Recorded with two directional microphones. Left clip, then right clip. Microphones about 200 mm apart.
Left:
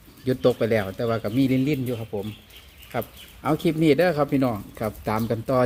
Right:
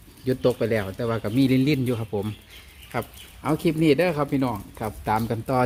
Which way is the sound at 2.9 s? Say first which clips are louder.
Left 1 dB; 15° right (ahead or behind).